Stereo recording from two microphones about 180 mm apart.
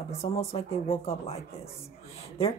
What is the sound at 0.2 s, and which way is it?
Speech, 35° left (ahead or behind).